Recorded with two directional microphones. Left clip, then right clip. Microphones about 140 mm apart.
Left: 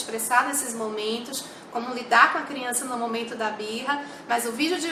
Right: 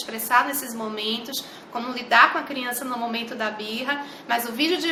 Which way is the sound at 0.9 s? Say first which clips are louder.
Right 1 dB; 15° right (ahead or behind).